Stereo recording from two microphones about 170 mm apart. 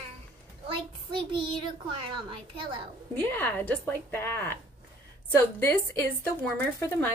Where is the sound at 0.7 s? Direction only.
30° right (ahead or behind).